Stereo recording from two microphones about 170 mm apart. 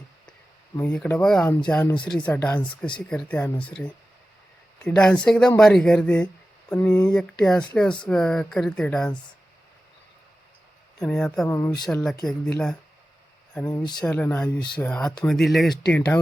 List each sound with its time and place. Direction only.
0.8 s speech: 10° left (ahead or behind)
1.9 s speech: 25° left (ahead or behind)
2.1 s speech: 10° left (ahead or behind)
11.0 s speech: 5° left (ahead or behind)
11.4 s speech: 15° left (ahead or behind)
12.2 s speech: 5° left (ahead or behind)
13.9 s speech: 5° left (ahead or behind)